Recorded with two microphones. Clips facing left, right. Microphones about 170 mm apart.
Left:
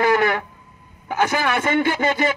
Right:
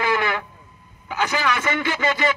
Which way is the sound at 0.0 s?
45° left (ahead or behind).